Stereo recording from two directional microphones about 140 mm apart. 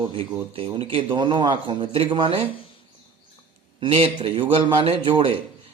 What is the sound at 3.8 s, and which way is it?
A man's voice, 40° right (ahead or behind).